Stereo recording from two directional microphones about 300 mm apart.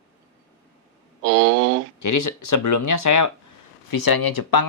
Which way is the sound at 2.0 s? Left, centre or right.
Left.